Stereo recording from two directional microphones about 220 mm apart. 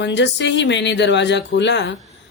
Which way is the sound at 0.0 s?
50° left (ahead or behind).